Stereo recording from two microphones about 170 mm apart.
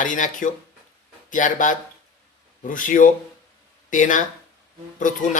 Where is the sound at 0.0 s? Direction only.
50° left (ahead or behind).